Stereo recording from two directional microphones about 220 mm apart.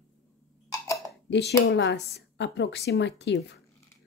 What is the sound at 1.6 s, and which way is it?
Speech, 55° left (ahead or behind).